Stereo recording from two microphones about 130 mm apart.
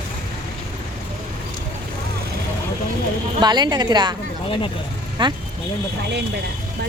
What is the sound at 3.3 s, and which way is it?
Speech, 35° right (ahead or behind).